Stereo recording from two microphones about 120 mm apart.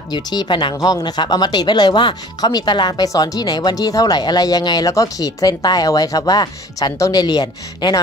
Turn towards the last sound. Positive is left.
turn(degrees=35)  # may be behind; listen again after turning